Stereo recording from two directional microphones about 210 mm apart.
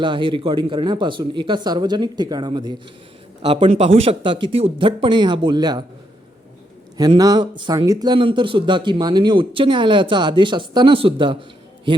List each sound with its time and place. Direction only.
0.0 s a man's voice: 25° right (ahead or behind)
6.9 s a man's voice: 20° right (ahead or behind)